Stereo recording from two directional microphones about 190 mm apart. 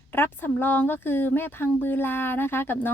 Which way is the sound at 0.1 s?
10° left (ahead or behind).